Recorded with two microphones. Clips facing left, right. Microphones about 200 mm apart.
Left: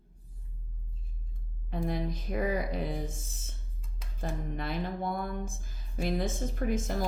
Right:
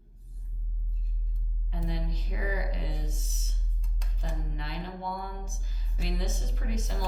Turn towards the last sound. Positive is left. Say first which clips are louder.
# left 6 dB
turn(degrees=50)  # may be behind; listen again after turning